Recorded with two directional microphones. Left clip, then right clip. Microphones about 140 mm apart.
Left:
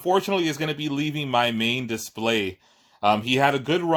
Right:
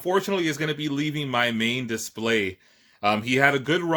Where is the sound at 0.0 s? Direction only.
15° left (ahead or behind).